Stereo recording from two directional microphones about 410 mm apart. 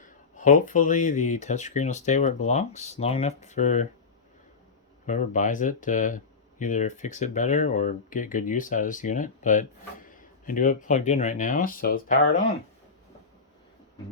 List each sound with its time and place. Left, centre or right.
0.0 s speech: centre
5.0 s speech: centre